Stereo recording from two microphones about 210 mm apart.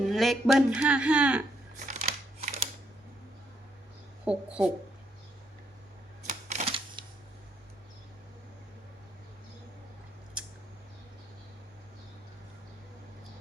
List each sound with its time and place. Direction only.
0.0 s speech: centre (ahead or behind)
1.9 s scissors: 35° right (ahead or behind)
4.3 s speech: 5° right (ahead or behind)
6.2 s typewriter: 35° right (ahead or behind)
10.4 s scissors: 5° right (ahead or behind)